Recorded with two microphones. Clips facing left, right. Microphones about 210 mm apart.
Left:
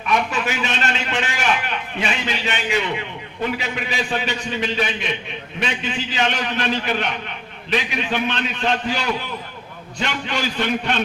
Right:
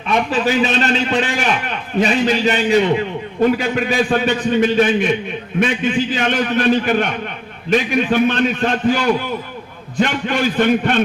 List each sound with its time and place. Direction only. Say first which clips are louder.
0.1 s a man's voice: right 5 dB; 35° right (ahead or behind); by 11.0 s 50° right (ahead or behind)